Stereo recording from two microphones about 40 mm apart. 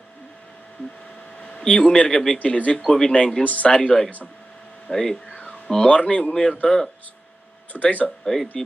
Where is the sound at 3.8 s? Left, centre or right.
Centre.